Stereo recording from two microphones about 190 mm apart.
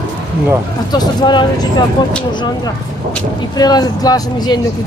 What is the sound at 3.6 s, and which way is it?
Speech, 20° left (ahead or behind).